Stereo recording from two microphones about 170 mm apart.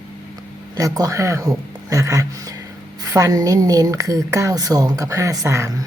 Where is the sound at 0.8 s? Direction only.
20° right (ahead or behind).